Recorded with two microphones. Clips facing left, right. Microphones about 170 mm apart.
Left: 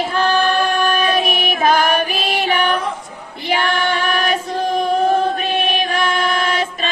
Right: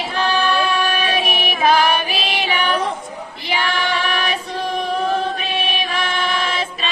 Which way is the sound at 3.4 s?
50° left (ahead or behind).